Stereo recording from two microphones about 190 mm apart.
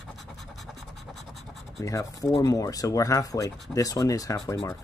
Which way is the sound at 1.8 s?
15° left (ahead or behind).